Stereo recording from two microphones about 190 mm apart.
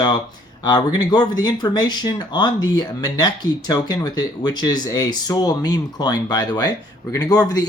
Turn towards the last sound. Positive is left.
turn(degrees=20)  # may be behind; listen again after turning